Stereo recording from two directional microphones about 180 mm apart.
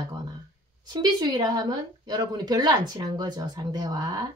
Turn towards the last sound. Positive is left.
turn(degrees=-20)  # may be behind; listen again after turning